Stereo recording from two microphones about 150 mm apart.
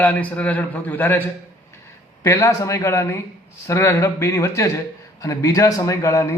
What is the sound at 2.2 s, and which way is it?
A man's voice, 20° left (ahead or behind).